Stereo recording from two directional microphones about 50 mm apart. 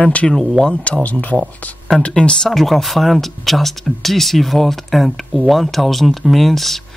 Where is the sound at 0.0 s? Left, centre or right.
Left.